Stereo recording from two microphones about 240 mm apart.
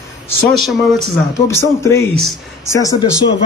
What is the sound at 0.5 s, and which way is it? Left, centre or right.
Speech, centre.